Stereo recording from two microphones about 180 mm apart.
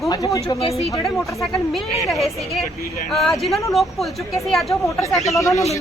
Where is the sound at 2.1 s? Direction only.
Centre (ahead or behind).